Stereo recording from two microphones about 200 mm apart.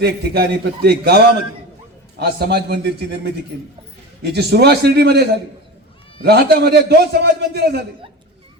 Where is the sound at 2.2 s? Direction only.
50° right (ahead or behind).